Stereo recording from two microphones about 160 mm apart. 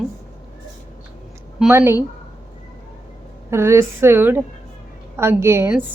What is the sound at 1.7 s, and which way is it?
Speech, 15° right (ahead or behind).